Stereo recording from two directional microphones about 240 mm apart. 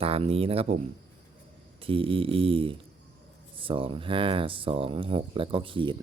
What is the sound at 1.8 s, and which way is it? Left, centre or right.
Speech, right.